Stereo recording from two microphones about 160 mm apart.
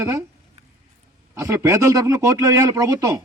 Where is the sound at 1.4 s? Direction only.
20° right (ahead or behind).